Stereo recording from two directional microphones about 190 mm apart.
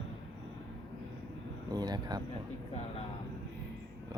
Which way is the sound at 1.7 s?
20° right (ahead or behind).